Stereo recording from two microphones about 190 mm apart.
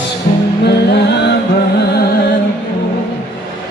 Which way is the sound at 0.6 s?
60° left (ahead or behind).